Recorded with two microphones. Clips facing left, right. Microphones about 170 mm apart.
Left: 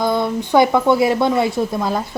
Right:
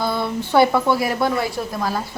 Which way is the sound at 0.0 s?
15° left (ahead or behind).